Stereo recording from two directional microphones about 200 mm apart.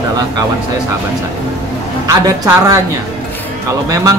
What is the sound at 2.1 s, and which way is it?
Speech, 15° right (ahead or behind).